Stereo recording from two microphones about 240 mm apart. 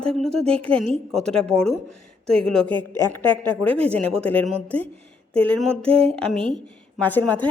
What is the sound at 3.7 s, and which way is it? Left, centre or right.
Speech, right.